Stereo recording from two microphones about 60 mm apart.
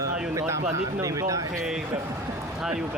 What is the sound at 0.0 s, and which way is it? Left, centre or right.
Speech, right.